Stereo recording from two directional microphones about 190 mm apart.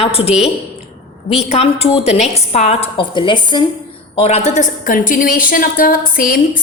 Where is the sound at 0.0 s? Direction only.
30° left (ahead or behind).